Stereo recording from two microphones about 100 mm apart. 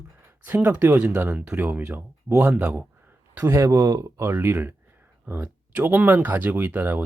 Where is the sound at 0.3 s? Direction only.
20° right (ahead or behind).